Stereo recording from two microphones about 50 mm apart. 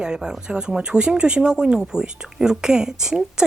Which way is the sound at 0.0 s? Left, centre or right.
Centre.